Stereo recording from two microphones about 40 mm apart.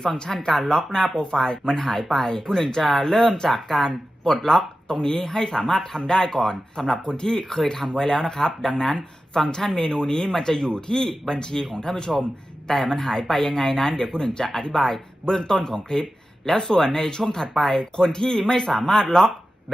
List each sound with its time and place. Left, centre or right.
0.0 s speech: centre